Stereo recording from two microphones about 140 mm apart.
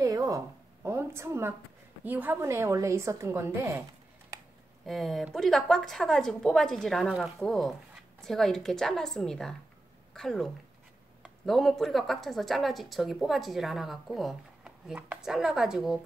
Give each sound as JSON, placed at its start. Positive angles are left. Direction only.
{"t": 0.0, "sound": "a sound", "side_deg": -25}
{"t": 0.8, "sound": "a woman's voice", "side_deg": -20}
{"t": 4.8, "sound": "speech", "side_deg": 0}